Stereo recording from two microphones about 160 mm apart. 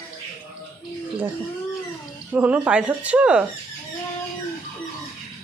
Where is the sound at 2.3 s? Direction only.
10° right (ahead or behind).